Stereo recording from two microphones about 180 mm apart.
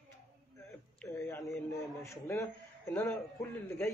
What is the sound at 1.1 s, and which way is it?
Speech, 15° left (ahead or behind).